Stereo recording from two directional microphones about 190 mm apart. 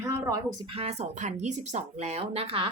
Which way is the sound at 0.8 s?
35° right (ahead or behind).